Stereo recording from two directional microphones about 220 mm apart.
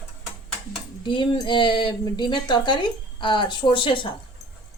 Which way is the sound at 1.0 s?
20° left (ahead or behind).